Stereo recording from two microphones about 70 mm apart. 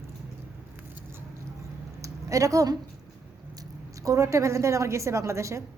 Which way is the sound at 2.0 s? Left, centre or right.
Right.